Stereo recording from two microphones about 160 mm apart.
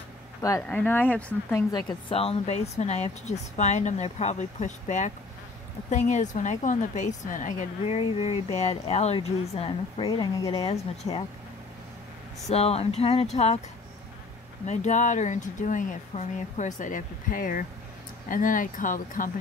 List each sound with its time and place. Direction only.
0.4 s speech: 20° left (ahead or behind)
1.7 s speech: 25° left (ahead or behind)
10.6 s speech: 40° left (ahead or behind)
12.4 s speech: 40° left (ahead or behind)
14.7 s speech: 45° left (ahead or behind)